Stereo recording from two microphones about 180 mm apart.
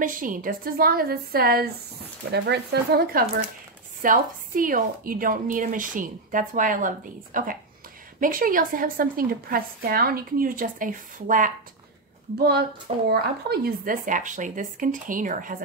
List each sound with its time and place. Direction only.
0.0 s a woman's voice: 50° right (ahead or behind)
12.4 s a woman's voice: 60° right (ahead or behind)